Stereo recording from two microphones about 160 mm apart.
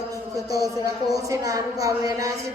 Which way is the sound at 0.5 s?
20° right (ahead or behind).